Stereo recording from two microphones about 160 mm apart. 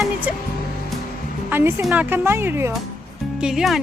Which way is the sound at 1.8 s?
10° right (ahead or behind).